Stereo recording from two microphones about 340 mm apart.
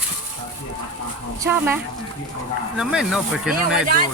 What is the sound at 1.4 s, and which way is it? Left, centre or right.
Speech, centre.